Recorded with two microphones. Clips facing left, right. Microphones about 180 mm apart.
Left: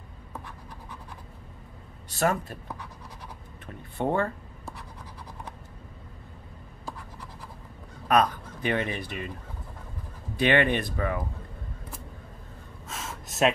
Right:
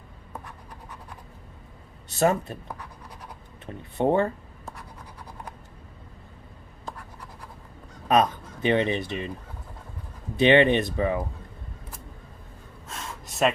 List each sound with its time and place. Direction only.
2.1 s speech: 20° right (ahead or behind)
3.6 s speech: 20° right (ahead or behind)
8.1 s speech: 20° right (ahead or behind)
10.3 s speech: 20° right (ahead or behind)
12.8 s gasp: centre (ahead or behind)